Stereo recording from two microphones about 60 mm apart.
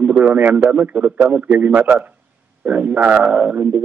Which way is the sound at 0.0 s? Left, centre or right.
Right.